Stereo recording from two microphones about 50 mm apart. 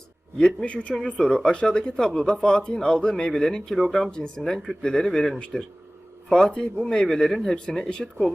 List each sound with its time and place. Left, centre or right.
0.3 s speech: centre
4.1 s speech: centre